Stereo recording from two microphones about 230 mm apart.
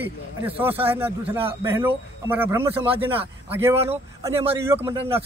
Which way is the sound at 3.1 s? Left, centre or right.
Centre.